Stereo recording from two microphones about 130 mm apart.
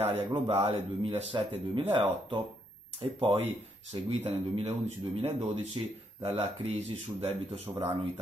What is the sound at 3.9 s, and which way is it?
Speech, 50° right (ahead or behind).